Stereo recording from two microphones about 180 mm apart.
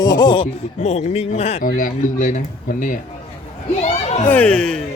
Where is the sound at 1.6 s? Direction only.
50° left (ahead or behind).